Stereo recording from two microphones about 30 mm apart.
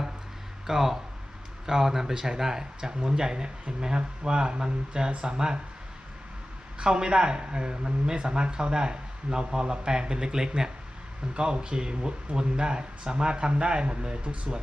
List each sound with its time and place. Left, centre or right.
0.7 s speech: centre
6.7 s speech: right
11.3 s speech: right